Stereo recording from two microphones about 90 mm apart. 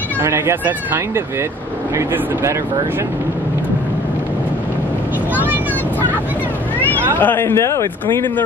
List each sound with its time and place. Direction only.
0.2 s speech: 30° right (ahead or behind)
7.2 s a man's voice: 20° left (ahead or behind)